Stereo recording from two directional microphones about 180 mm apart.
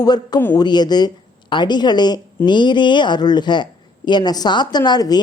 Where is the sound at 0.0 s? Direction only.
25° left (ahead or behind).